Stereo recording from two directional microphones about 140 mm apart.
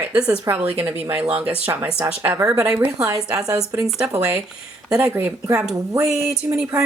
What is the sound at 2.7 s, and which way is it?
Speech, 5° right (ahead or behind).